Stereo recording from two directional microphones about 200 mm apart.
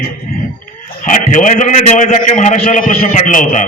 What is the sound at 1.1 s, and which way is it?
A man's voice, 40° left (ahead or behind).